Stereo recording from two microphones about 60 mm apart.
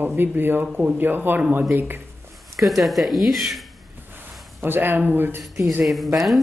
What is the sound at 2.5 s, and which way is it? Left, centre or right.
Speech, centre.